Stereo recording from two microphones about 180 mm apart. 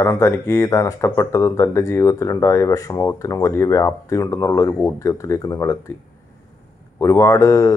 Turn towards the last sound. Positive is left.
turn(degrees=15)  # may be behind; listen again after turning